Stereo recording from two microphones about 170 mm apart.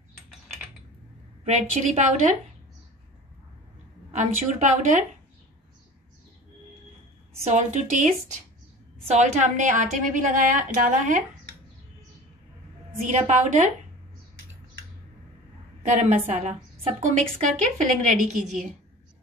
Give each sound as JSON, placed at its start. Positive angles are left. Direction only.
{"t": 1.4, "sound": "a woman's voice", "side_deg": -40}
{"t": 4.1, "sound": "a woman's voice", "side_deg": -45}
{"t": 7.4, "sound": "a woman's voice", "side_deg": -45}
{"t": 13.0, "sound": "a woman's voice", "side_deg": -40}
{"t": 15.8, "sound": "a woman's voice", "side_deg": -45}